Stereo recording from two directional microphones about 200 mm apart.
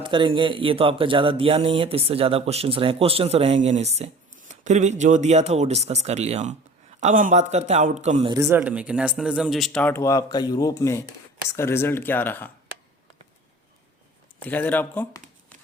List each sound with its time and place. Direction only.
0.0 s speech: 25° right (ahead or behind)
8.3 s speech: 15° right (ahead or behind); by 12.5 s 10° left (ahead or behind)
14.4 s speech: 10° left (ahead or behind)